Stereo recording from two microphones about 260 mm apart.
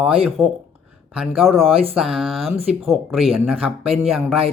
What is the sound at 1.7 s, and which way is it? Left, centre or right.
Speech, right.